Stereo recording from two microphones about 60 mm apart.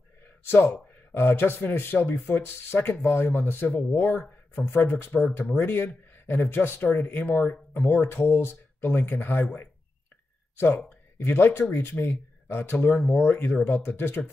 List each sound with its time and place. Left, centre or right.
0.4 s speech: left
11.2 s speech: left
12.7 s speech: left
13.1 s speech: left